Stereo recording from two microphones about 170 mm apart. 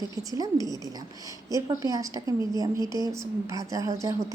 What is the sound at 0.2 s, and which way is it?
A woman's voice, 20° right (ahead or behind).